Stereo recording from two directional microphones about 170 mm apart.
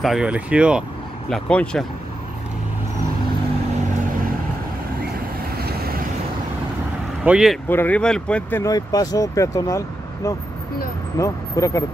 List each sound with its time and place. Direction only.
0.0 s speech: 5° right (ahead or behind)
1.3 s speech: 5° left (ahead or behind)
5.6 s vehicle: 65° right (ahead or behind)
7.2 s speech: 5° right (ahead or behind)
7.6 s speech: 10° left (ahead or behind)